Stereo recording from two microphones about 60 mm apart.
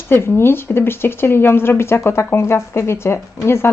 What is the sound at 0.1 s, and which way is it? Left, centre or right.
Speech, left.